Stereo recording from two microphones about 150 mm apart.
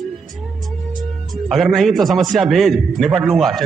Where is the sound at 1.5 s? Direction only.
Centre (ahead or behind).